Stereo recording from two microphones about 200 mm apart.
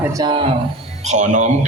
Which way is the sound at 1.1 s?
35° right (ahead or behind).